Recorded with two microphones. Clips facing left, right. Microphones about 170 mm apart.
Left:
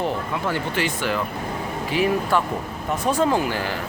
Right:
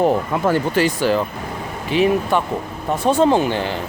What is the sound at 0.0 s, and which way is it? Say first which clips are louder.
Speech: right 8 dB; 45° right (ahead or behind).